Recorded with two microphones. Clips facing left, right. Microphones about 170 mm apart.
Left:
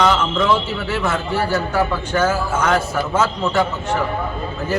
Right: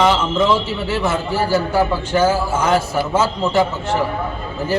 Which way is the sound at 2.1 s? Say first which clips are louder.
Right 2 dB; 30° right (ahead or behind).